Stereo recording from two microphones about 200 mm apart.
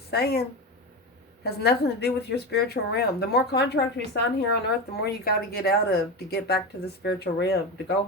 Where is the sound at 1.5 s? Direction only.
55° left (ahead or behind).